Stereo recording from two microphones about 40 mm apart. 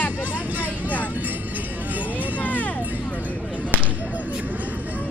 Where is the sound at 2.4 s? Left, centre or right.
Left.